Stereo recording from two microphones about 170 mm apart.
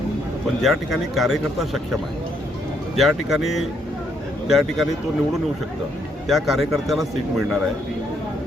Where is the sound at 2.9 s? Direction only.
Centre (ahead or behind).